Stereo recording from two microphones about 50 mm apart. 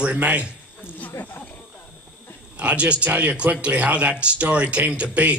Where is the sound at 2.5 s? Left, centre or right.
Right.